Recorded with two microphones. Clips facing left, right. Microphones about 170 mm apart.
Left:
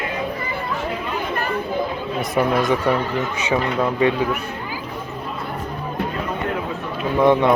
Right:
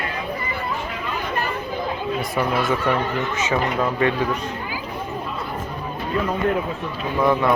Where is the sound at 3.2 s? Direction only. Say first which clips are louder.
Left 1 dB; 10° left (ahead or behind).